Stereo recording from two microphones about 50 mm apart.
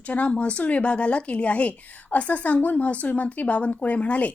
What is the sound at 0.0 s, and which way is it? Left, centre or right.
Speech, left.